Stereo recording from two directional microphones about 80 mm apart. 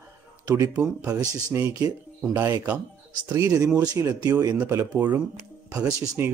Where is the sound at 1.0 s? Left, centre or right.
Right.